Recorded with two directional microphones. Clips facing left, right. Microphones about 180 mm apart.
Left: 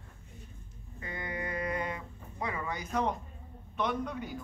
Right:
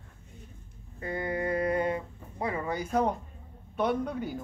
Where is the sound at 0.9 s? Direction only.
35° right (ahead or behind).